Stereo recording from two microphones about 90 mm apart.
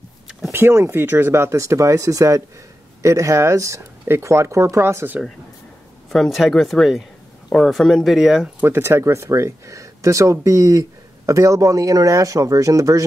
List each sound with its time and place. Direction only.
0.5 s speech: 25° right (ahead or behind)
6.0 s speech: centre (ahead or behind)
8.5 s speech: 25° right (ahead or behind)